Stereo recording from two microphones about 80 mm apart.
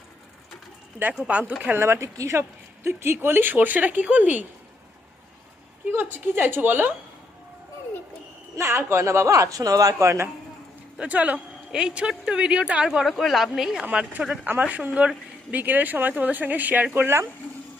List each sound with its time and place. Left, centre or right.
1.2 s a woman's voice: centre
1.6 s speech: right
5.9 s speech: right
8.5 s speech: right
10.9 s a woman's voice: centre
13.9 s a woman's voice: centre; by 17.2 s right